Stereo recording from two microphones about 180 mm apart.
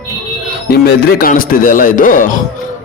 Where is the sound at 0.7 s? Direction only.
55° left (ahead or behind).